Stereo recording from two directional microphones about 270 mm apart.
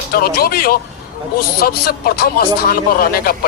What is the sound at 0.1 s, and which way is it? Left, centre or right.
Speech, left.